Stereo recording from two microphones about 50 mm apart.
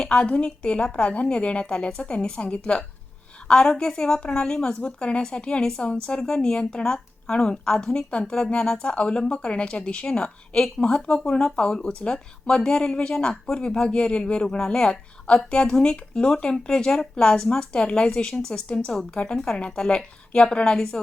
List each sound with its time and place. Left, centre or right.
0.0 s a woman's voice: centre